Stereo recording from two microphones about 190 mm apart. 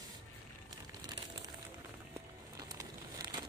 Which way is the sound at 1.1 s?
20° right (ahead or behind).